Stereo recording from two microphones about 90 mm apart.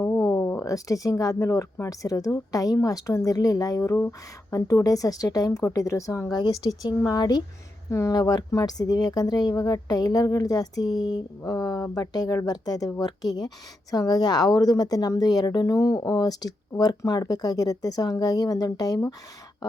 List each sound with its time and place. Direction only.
0.0 s a woman's voice: 30° left (ahead or behind)
3.8 s speech: 25° left (ahead or behind)
4.5 s a woman's voice: 35° left (ahead or behind)
7.0 s speech: 45° left (ahead or behind)
7.9 s a woman's voice: 35° left (ahead or behind)
8.2 s speech: 50° left (ahead or behind)